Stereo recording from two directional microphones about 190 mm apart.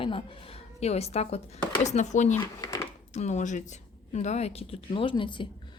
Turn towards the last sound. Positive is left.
turn(degrees=25)  # may be behind; listen again after turning